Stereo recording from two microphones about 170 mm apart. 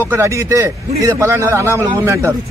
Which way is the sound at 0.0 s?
15° right (ahead or behind).